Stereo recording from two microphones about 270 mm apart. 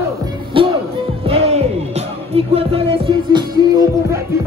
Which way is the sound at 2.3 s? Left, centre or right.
Right.